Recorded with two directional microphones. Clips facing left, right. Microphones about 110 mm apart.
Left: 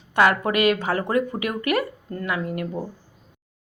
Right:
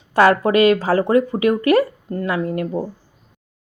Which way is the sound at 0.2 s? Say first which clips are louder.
Right 6 dB; 30° right (ahead or behind).